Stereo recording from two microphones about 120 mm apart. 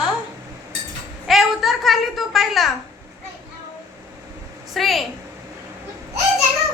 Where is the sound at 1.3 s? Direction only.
Centre (ahead or behind).